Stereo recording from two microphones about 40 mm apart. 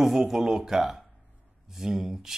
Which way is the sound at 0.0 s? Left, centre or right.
Centre.